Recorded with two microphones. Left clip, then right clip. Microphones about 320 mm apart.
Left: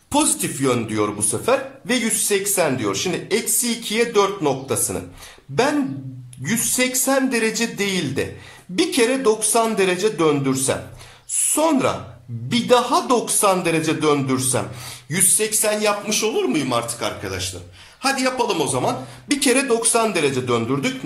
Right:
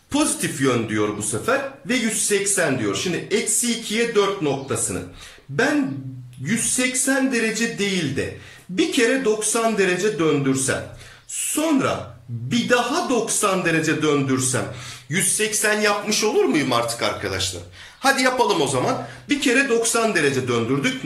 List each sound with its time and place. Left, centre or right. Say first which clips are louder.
0.1 s a man's voice: left 2 dB; centre
6.4 s a man's voice: left 2 dB; centre